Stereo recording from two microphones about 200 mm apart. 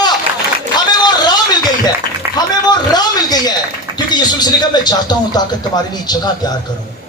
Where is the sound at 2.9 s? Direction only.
20° left (ahead or behind).